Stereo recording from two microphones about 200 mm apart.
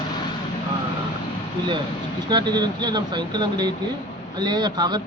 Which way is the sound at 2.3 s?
20° right (ahead or behind).